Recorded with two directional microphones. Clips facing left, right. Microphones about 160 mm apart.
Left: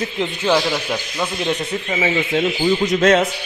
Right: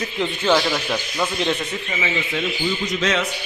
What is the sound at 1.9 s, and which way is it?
Speech, 45° left (ahead or behind).